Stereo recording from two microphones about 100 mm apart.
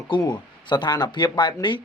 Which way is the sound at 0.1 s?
50° left (ahead or behind).